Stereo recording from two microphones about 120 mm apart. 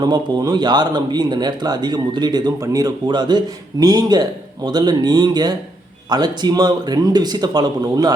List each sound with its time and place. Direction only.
0.0 s speech: 35° right (ahead or behind)